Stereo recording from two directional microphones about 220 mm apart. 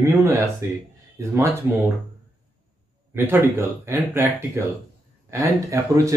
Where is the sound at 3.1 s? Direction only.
10° right (ahead or behind).